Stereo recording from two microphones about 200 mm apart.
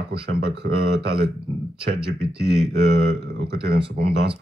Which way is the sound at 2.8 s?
50° right (ahead or behind).